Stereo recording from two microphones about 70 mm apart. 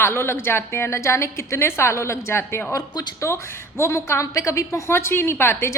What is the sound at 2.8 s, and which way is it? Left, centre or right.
Speech, left.